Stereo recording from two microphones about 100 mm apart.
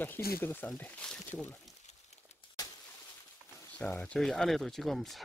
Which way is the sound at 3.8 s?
15° left (ahead or behind).